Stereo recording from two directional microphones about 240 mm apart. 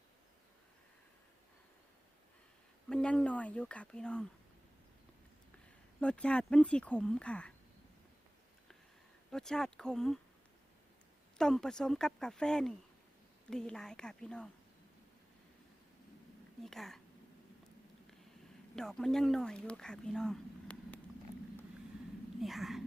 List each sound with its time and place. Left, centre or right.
2.9 s speech: centre
6.0 s speech: centre
9.3 s speech: centre
11.3 s speech: centre
16.6 s speech: centre
18.8 s speech: centre
22.4 s speech: centre